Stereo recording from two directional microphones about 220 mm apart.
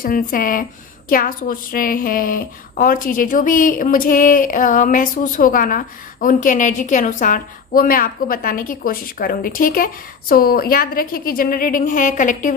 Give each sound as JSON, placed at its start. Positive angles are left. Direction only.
{"t": 0.0, "sound": "a woman's voice", "side_deg": 40}